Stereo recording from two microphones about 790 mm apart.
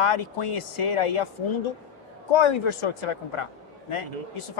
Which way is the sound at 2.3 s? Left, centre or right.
Left.